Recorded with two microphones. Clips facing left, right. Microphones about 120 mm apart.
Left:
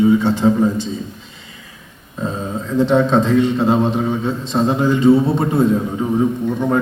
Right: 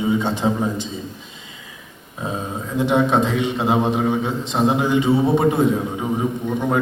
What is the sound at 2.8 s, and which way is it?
A man's voice, 15° right (ahead or behind).